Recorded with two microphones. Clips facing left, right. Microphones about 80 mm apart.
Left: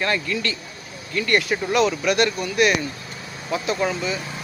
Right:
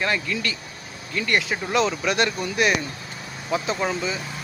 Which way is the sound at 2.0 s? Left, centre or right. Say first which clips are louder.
Left 2 dB; right.